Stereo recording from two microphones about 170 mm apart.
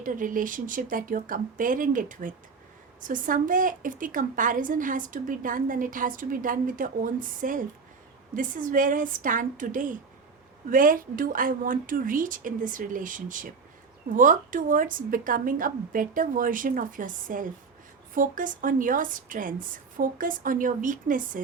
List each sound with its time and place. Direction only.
0.0 s a woman's voice: 50° right (ahead or behind)